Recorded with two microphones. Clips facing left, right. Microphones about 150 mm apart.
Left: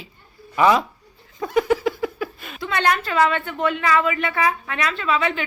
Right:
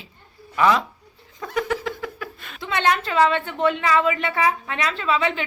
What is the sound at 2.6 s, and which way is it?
A woman's voice, 20° right (ahead or behind).